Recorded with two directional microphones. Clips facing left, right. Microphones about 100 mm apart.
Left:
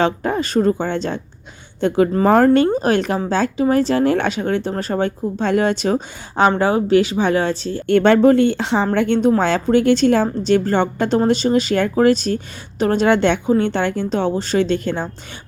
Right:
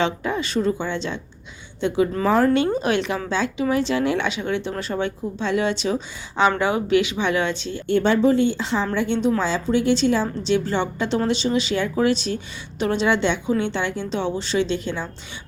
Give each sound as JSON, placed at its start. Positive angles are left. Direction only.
{"t": 0.0, "sound": "a woman's voice", "side_deg": 45}
{"t": 6.6, "sound": "speech", "side_deg": 35}
{"t": 7.9, "sound": "a woman's voice", "side_deg": 65}